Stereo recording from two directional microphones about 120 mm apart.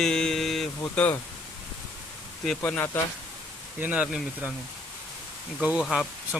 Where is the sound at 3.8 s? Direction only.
10° right (ahead or behind).